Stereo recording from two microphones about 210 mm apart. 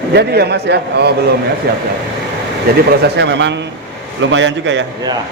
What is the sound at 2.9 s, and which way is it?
Speech, 55° right (ahead or behind).